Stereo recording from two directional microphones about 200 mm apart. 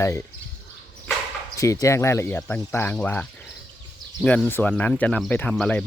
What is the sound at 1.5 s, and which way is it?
Speech, 15° left (ahead or behind).